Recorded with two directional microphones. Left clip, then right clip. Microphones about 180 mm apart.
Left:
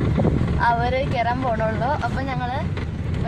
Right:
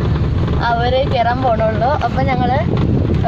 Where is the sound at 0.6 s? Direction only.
5° left (ahead or behind).